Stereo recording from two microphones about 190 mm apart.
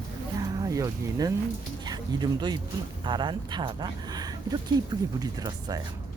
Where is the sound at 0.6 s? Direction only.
20° right (ahead or behind).